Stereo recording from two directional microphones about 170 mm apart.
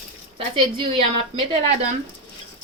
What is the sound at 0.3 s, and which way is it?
Speech, 30° right (ahead or behind).